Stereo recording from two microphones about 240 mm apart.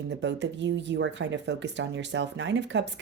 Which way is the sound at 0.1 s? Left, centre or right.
Right.